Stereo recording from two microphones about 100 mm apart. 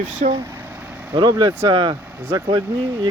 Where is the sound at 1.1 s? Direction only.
45° right (ahead or behind).